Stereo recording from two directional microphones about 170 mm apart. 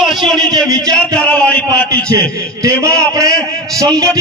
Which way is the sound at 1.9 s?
20° right (ahead or behind).